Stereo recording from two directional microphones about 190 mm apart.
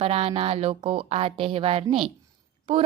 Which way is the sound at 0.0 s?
30° right (ahead or behind).